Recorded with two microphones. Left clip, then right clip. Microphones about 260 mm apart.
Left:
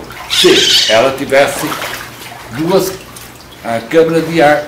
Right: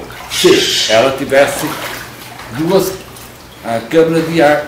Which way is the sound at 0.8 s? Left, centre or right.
Centre.